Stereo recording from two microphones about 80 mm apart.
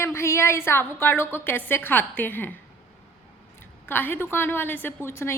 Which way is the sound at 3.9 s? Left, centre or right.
Left.